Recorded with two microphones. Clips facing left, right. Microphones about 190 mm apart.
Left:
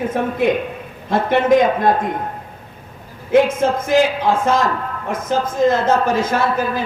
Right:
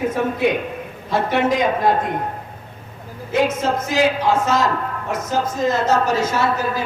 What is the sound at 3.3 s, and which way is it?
A man's voice, 55° left (ahead or behind).